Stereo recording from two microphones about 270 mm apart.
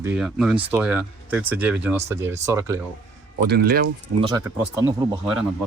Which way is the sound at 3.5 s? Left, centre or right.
Right.